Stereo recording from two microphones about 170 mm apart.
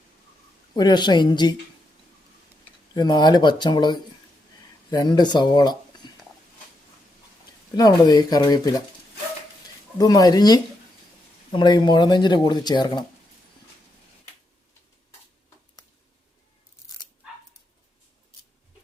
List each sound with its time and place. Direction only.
0.8 s speech: 25° left (ahead or behind)
2.9 s speech: 25° left (ahead or behind)
6.0 s a sound: 25° left (ahead or behind)
7.8 s speech: 25° left (ahead or behind)
10.0 s speech: 20° left (ahead or behind)